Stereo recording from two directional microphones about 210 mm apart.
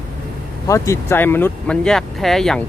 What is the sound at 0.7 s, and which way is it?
Speech, 15° left (ahead or behind).